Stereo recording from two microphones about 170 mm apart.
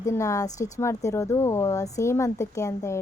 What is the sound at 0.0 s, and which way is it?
A woman's voice, 20° left (ahead or behind).